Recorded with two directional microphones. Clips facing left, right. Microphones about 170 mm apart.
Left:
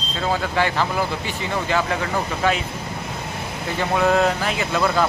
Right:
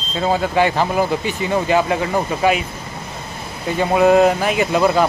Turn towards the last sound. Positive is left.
turn(degrees=-20)  # may be behind; listen again after turning